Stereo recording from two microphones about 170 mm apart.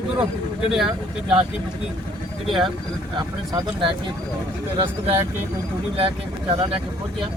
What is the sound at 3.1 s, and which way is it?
Speech, 25° right (ahead or behind).